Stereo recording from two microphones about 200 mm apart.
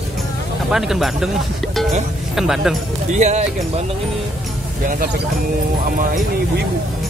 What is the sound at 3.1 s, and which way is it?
Speech, 35° right (ahead or behind).